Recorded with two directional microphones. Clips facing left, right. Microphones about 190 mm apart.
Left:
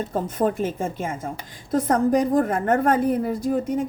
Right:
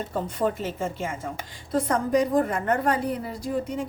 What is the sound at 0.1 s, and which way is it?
A woman's voice, 50° left (ahead or behind).